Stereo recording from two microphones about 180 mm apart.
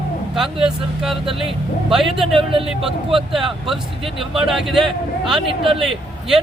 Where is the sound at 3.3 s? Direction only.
Centre (ahead or behind).